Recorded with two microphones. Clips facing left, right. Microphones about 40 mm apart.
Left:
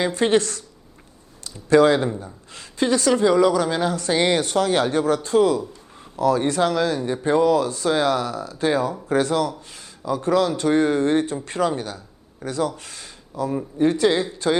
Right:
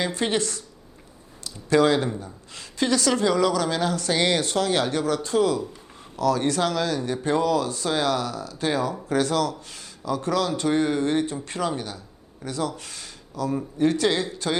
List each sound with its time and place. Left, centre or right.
0.2 s a woman's voice: left